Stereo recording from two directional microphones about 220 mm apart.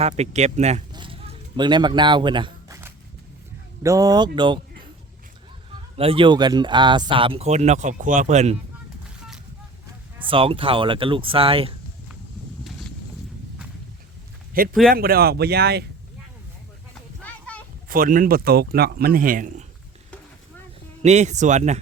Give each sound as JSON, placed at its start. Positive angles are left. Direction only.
{"t": 0.0, "sound": "speech", "side_deg": -30}
{"t": 5.7, "sound": "speech", "side_deg": -25}
{"t": 9.0, "sound": "a sound", "side_deg": 0}
{"t": 10.2, "sound": "speech", "side_deg": -25}
{"t": 14.5, "sound": "a man's voice", "side_deg": -40}
{"t": 17.2, "sound": "a sound", "side_deg": 5}
{"t": 17.8, "sound": "speech", "side_deg": -40}
{"t": 21.0, "sound": "speech", "side_deg": -30}